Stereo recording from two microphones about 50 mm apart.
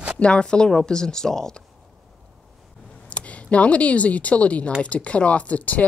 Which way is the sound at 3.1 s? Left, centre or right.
Left.